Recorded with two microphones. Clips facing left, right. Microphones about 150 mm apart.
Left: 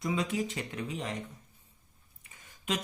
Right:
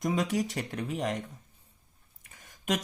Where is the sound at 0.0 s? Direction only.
45° right (ahead or behind).